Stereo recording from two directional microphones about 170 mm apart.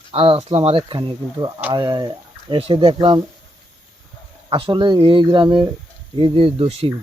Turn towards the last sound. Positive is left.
turn(degrees=-35)  # may be behind; listen again after turning